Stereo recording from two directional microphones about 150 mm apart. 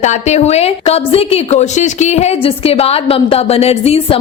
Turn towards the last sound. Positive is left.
turn(degrees=40)  # may be behind; listen again after turning